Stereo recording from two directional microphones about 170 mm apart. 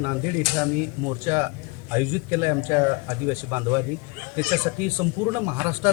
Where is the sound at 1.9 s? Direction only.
15° right (ahead or behind).